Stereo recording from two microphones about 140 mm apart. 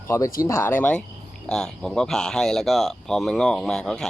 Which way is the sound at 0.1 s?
20° left (ahead or behind).